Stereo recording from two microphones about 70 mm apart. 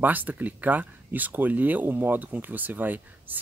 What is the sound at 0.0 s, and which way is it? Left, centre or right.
Speech, right.